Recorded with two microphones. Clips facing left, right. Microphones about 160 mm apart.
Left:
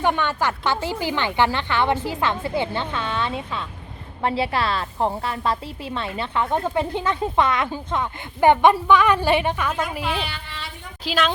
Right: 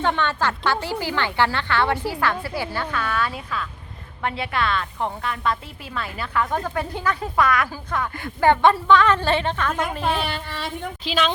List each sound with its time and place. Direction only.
0.0 s a woman's voice: 15° left (ahead or behind)
10.0 s speech: 45° right (ahead or behind)
11.0 s a woman's voice: 5° left (ahead or behind)